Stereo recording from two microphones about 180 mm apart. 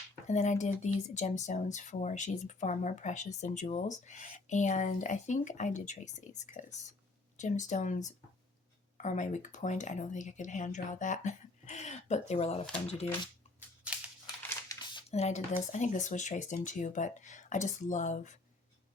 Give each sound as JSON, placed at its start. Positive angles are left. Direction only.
{"t": 0.3, "sound": "speech", "side_deg": 40}
{"t": 14.7, "sound": "speech", "side_deg": 25}